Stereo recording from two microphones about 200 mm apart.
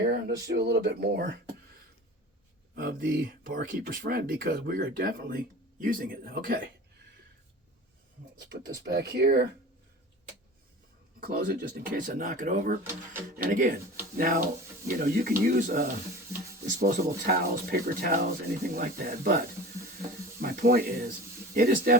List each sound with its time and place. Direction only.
0.0 s a sound: 50° right (ahead or behind)
0.4 s speech: 55° right (ahead or behind)
3.0 s speech: 50° right (ahead or behind)
8.4 s speech: 65° right (ahead or behind)
11.2 s speech: 45° right (ahead or behind)